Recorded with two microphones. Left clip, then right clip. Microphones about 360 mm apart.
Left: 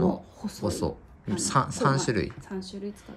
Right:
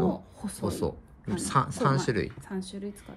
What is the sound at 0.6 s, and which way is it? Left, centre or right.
Speech, centre.